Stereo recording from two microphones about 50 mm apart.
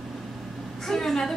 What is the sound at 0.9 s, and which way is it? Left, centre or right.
Speech, centre.